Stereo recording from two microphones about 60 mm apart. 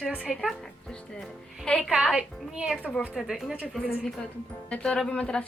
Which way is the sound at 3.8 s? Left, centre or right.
Left.